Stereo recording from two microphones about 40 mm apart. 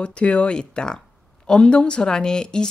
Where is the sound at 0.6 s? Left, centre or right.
Centre.